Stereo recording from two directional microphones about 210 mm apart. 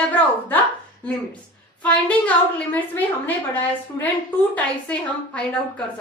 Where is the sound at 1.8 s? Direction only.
5° left (ahead or behind).